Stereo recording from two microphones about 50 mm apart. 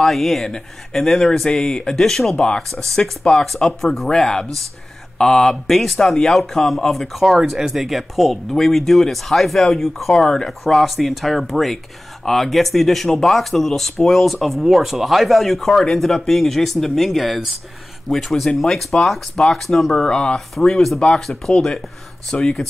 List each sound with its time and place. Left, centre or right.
0.0 s speech: centre
2.7 s speech: centre
20.1 s speech: centre
20.3 s speech: centre